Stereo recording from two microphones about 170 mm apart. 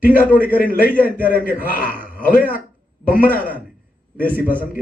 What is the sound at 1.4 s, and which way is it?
A man's voice, 55° left (ahead or behind).